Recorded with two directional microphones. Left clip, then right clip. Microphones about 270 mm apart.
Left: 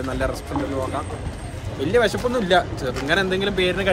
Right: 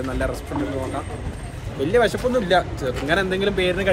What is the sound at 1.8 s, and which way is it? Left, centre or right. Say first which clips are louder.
Speech: even; centre.